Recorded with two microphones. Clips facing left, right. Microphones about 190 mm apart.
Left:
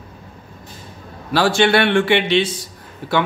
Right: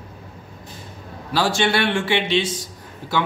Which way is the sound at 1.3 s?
60° left (ahead or behind).